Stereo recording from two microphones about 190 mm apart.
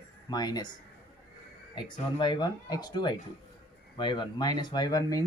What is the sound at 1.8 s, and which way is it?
Speech, 25° left (ahead or behind).